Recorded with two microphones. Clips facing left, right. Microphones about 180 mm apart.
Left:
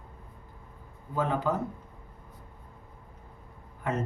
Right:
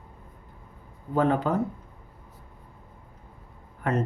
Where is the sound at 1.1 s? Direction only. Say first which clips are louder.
Right 5 dB; 60° right (ahead or behind).